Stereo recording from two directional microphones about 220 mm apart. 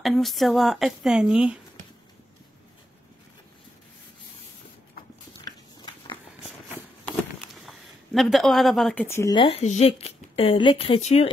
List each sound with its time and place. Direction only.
0.0 s speech: centre (ahead or behind)
7.1 s speech: centre (ahead or behind); by 11.3 s 30° left (ahead or behind)